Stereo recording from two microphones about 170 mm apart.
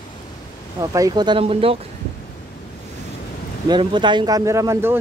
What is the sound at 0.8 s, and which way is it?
Speech, 20° right (ahead or behind).